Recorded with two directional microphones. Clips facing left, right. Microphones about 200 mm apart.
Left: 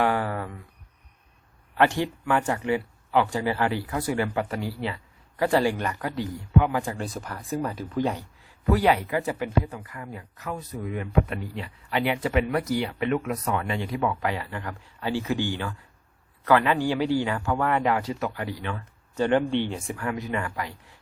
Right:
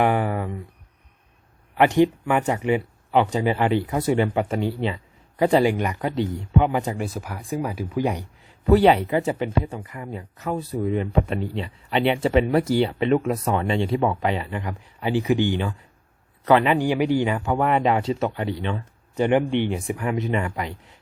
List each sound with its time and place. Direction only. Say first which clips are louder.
0.0 s a sound: right 4 dB; 20° right (ahead or behind)
1.7 s speech: right 6 dB; 20° right (ahead or behind)
7.0 s speech: right 3 dB; 10° right (ahead or behind)